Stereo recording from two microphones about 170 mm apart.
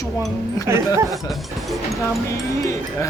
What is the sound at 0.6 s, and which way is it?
Speech, 15° right (ahead or behind).